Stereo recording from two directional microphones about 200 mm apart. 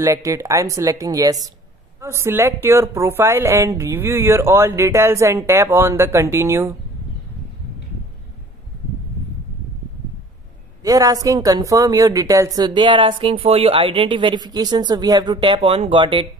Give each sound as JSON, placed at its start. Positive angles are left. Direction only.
{"t": 0.0, "sound": "speech", "side_deg": -15}
{"t": 10.8, "sound": "speech", "side_deg": -15}